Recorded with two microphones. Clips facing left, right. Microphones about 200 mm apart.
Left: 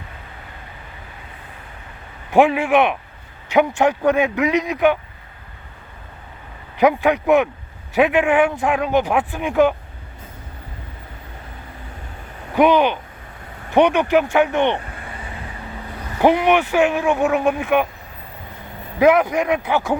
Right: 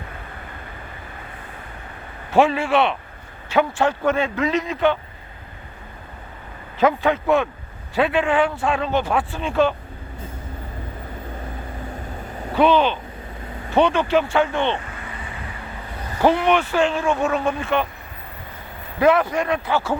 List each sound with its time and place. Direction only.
2.3 s a man's voice: 15° left (ahead or behind)
6.7 s a man's voice: 15° left (ahead or behind)
12.5 s a man's voice: 15° left (ahead or behind)
16.2 s a man's voice: 15° left (ahead or behind)
18.9 s a man's voice: 15° left (ahead or behind)